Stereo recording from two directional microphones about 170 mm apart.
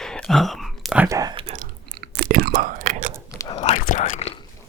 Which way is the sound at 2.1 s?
60° right (ahead or behind).